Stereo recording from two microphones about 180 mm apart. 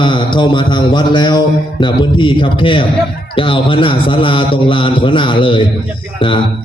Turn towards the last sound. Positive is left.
turn(degrees=30)  # may be behind; listen again after turning